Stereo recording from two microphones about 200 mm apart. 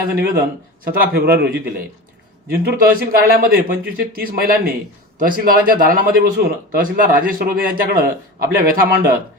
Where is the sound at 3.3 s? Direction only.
45° right (ahead or behind).